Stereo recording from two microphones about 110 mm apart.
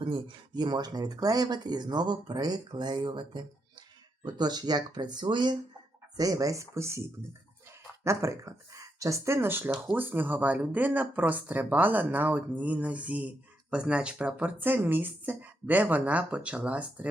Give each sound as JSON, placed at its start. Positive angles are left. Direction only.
{"t": 0.0, "sound": "speech", "side_deg": -50}
{"t": 8.0, "sound": "speech", "side_deg": -25}